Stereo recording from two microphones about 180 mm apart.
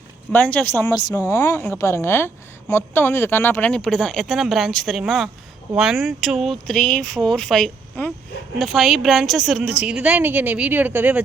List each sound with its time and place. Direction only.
0.3 s a woman's voice: 10° left (ahead or behind); by 11.2 s 10° right (ahead or behind)